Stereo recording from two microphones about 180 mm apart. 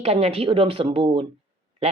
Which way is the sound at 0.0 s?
35° right (ahead or behind).